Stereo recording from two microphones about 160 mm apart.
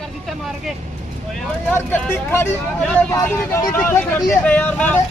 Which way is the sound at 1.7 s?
15° left (ahead or behind).